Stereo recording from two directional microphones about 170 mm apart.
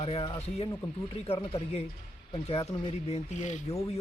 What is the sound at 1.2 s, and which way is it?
Speech, 35° left (ahead or behind).